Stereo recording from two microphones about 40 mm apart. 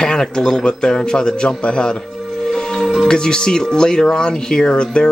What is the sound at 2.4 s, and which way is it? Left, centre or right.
Music, centre.